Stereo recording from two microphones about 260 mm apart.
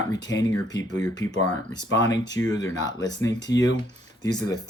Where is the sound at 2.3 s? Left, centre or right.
Centre.